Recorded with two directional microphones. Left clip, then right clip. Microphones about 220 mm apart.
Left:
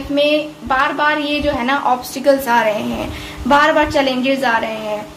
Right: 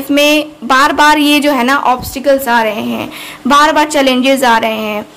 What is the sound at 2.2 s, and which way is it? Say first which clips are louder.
A woman's voice: right 2 dB; 20° right (ahead or behind).